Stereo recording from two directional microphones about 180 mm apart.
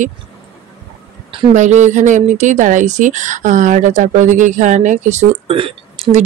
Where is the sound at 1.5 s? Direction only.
40° right (ahead or behind).